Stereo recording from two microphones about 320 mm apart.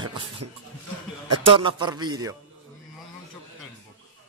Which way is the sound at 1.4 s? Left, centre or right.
Centre.